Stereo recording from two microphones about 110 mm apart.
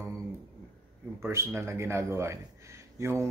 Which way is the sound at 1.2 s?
25° right (ahead or behind).